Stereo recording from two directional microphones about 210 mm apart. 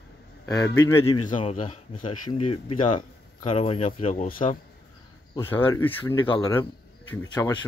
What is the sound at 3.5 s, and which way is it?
Speech, 25° left (ahead or behind).